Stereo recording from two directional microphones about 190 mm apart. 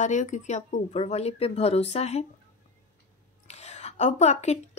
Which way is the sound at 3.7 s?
35° left (ahead or behind).